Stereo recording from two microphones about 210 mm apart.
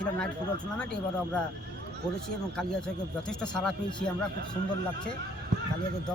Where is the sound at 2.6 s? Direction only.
5° left (ahead or behind).